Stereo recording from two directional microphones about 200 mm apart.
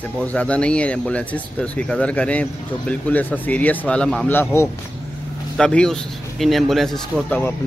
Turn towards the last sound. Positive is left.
turn(degrees=10)  # may be behind; listen again after turning